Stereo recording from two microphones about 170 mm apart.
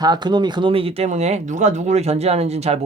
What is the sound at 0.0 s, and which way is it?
Speech, 25° right (ahead or behind).